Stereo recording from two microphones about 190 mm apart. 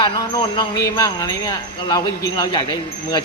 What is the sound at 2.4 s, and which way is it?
Speech, 20° left (ahead or behind).